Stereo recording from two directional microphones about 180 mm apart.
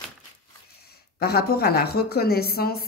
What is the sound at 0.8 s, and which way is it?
A woman's voice, 60° left (ahead or behind).